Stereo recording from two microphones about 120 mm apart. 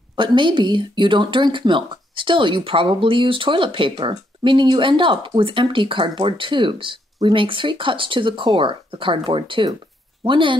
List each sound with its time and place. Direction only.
0.1 s speech: 40° right (ahead or behind)